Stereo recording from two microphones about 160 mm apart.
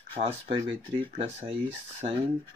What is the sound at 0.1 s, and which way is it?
Speech, 35° right (ahead or behind).